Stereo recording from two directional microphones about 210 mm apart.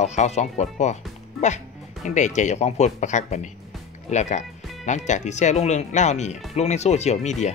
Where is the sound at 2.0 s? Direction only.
35° left (ahead or behind).